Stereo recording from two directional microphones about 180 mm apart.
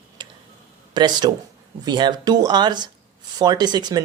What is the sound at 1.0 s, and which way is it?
Speech, 25° right (ahead or behind).